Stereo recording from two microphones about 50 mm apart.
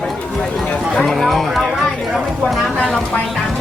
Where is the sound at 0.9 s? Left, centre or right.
Centre.